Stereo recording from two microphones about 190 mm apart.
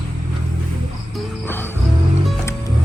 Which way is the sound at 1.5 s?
10° left (ahead or behind).